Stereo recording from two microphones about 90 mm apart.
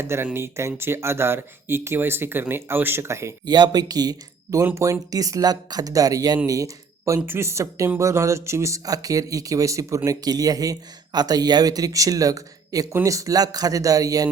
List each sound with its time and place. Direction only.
0.0 s speech: 30° right (ahead or behind)
3.4 s speech: 50° right (ahead or behind)
4.6 s speech: 35° right (ahead or behind)